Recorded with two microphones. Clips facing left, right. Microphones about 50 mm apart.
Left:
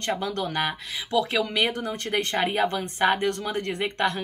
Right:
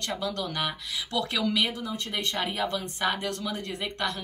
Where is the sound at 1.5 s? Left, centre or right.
Left.